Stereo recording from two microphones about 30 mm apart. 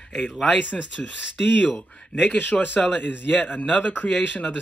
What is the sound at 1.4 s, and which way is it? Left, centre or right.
Speech, left.